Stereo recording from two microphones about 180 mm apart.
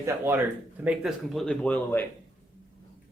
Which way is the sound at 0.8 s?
Centre (ahead or behind).